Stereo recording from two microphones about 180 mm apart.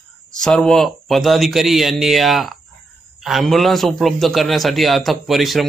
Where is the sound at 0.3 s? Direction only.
5° left (ahead or behind).